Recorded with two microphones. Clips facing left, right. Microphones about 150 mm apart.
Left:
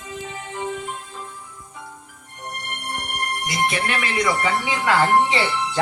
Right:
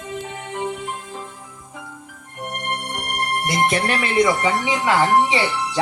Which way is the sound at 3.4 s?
50° right (ahead or behind).